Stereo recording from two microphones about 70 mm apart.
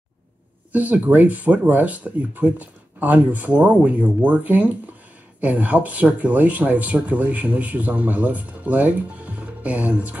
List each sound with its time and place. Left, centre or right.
0.7 s speech: right